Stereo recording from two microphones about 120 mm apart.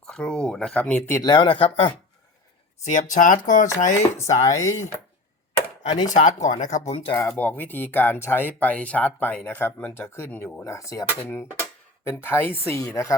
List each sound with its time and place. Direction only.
0.0 s speech: 5° left (ahead or behind)
1.2 s speech: 40° left (ahead or behind)
2.8 s speech: 90° left
4.4 s speech: 25° left (ahead or behind)
6.1 s speech: 90° left; by 7.1 s 65° left (ahead or behind)
7.2 s speech: 20° left (ahead or behind)